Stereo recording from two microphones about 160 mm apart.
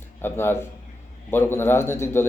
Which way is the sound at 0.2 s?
15° left (ahead or behind).